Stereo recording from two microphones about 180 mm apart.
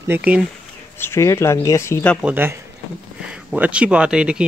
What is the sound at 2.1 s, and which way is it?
Speech, 10° right (ahead or behind).